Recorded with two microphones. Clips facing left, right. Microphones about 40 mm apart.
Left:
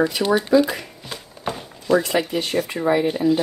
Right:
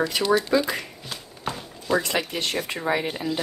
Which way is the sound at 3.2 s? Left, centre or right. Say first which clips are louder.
Left 10 dB; left.